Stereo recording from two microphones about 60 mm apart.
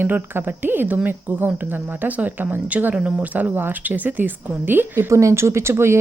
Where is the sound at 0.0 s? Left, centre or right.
Right.